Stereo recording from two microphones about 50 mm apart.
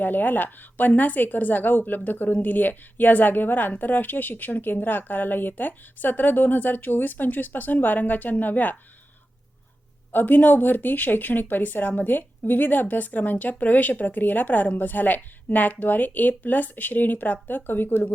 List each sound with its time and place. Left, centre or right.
0.0 s a woman's voice: left
10.1 s a woman's voice: left